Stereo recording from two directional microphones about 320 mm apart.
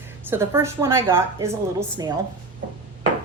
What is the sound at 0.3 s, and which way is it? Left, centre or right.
A woman's voice, centre.